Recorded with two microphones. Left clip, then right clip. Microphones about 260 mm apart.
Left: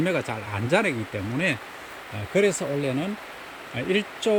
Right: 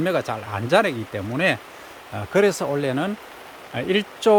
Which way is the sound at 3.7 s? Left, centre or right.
Centre.